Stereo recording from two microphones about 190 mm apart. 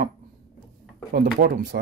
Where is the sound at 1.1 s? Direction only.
55° right (ahead or behind).